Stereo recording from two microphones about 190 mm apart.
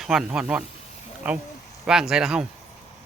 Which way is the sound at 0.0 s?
5° right (ahead or behind).